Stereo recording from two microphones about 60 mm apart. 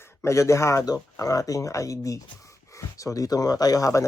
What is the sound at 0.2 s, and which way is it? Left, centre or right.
Speech, left.